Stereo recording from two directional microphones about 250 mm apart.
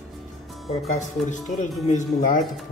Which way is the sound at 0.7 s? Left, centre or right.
Left.